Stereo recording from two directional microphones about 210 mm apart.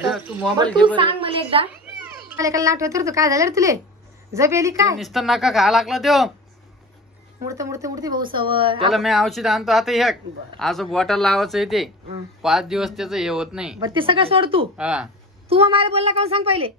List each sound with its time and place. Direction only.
0.1 s speech: 5° right (ahead or behind)
0.8 s a woman's voice: 25° right (ahead or behind)
2.3 s speech: 15° right (ahead or behind)
4.9 s speech: centre (ahead or behind)
7.4 s a woman's voice: 15° right (ahead or behind)
8.9 s speech: centre (ahead or behind)
13.7 s a woman's voice: 25° right (ahead or behind)
14.8 s speech: 5° right (ahead or behind)
15.4 s a woman's voice: 30° right (ahead or behind)